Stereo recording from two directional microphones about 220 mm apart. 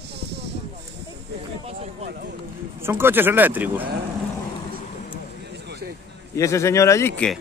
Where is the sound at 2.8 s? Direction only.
10° right (ahead or behind).